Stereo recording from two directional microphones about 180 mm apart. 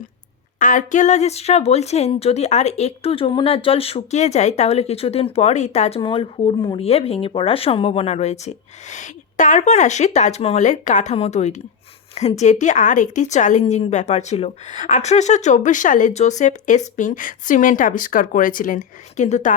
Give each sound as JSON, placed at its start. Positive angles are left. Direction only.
{"t": 0.6, "sound": "speech", "side_deg": 45}
{"t": 6.0, "sound": "a woman's voice", "side_deg": 30}